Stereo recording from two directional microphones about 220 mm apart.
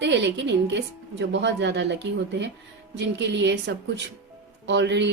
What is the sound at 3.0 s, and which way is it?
A woman's voice, 55° right (ahead or behind).